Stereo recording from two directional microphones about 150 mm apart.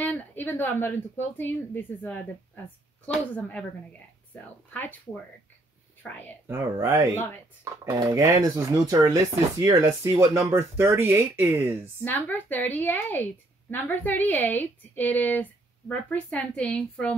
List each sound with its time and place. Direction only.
0.0 s a woman's voice: 10° left (ahead or behind)
6.4 s speech: 20° right (ahead or behind)
12.0 s a woman's voice: 10° left (ahead or behind)